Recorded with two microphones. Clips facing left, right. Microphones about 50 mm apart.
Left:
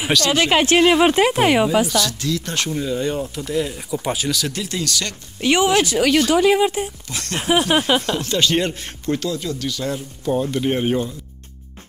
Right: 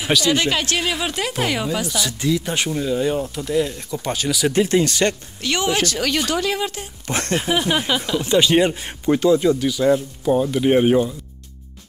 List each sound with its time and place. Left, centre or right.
0.3 s speech: left
2.0 s speech: centre
4.5 s speech: right
5.4 s speech: centre
6.4 s speech: centre
7.1 s speech: right
7.3 s speech: centre
8.2 s speech: centre
9.7 s speech: centre